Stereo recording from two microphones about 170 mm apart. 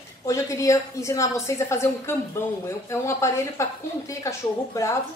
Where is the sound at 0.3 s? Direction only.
15° left (ahead or behind).